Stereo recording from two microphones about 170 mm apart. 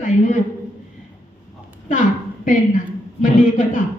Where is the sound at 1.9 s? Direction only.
50° left (ahead or behind).